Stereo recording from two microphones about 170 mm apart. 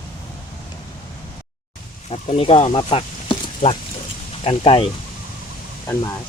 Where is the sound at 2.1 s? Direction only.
35° left (ahead or behind).